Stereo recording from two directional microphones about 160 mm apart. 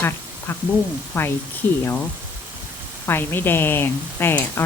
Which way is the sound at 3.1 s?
15° left (ahead or behind).